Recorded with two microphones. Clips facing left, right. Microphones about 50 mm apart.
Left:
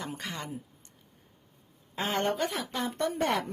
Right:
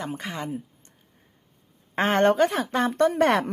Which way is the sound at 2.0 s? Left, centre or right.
Right.